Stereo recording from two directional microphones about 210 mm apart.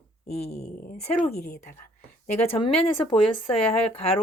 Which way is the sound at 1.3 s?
50° left (ahead or behind).